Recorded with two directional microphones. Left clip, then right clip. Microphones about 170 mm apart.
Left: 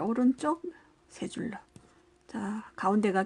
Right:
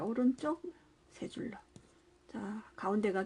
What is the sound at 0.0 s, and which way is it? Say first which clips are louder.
Speech: left 5 dB; 30° left (ahead or behind).